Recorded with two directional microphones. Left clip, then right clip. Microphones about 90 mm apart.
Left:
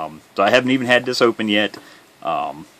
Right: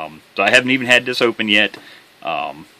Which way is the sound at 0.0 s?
30° left (ahead or behind).